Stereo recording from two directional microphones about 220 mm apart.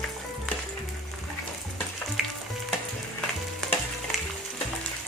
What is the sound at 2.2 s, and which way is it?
Frying, centre (ahead or behind).